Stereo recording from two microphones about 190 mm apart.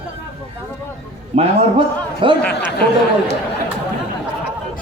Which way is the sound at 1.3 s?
35° right (ahead or behind).